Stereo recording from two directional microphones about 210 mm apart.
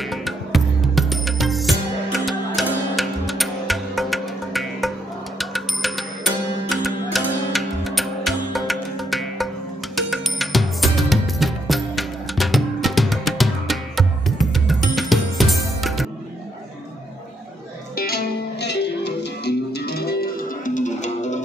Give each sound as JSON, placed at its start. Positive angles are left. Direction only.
{"t": 0.0, "sound": "music", "side_deg": 0}
{"t": 17.9, "sound": "music", "side_deg": 45}